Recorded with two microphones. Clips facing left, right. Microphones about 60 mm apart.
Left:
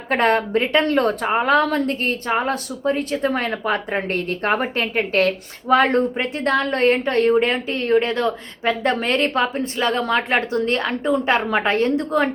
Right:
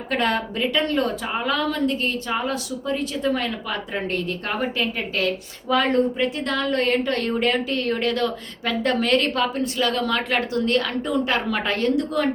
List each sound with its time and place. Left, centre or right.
0.1 s a woman's voice: left